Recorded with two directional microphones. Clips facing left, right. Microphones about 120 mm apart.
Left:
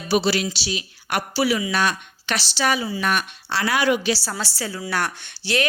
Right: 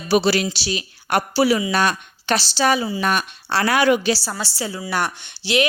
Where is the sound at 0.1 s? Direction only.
55° right (ahead or behind).